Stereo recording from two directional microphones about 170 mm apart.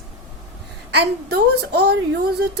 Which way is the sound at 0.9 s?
75° right (ahead or behind).